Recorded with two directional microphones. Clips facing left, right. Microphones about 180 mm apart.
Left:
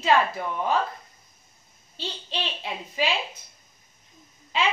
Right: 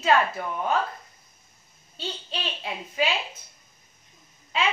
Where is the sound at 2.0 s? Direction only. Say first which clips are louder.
Left 1 dB; centre (ahead or behind).